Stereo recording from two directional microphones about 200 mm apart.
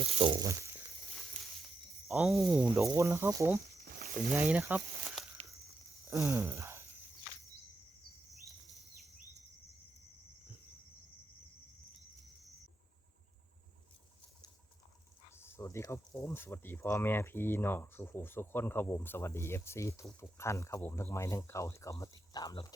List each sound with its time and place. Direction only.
0.0 s speech: 30° right (ahead or behind)
2.0 s speech: centre (ahead or behind)
2.7 s speech: 15° right (ahead or behind)
3.8 s sizzle: 50° right (ahead or behind)
4.3 s speech: 5° right (ahead or behind)
6.1 s a sound: 10° right (ahead or behind)
15.4 s speech: 10° left (ahead or behind)